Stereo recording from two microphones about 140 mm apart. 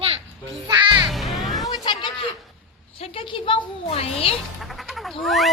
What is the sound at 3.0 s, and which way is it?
A woman's voice, 40° left (ahead or behind).